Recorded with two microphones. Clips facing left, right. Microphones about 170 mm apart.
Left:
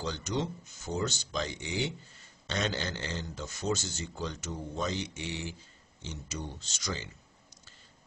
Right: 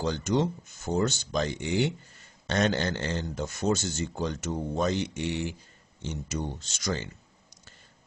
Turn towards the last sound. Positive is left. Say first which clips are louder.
# right 6 dB
turn(degrees=-55)  # may be behind; listen again after turning